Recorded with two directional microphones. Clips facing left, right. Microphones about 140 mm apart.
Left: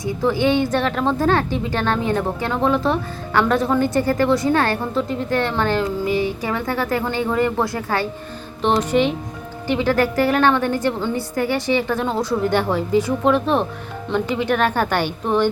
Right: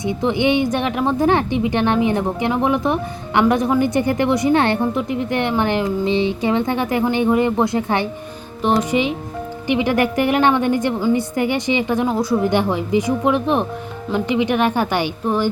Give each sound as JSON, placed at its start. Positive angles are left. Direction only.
{"t": 0.0, "sound": "speech", "side_deg": -20}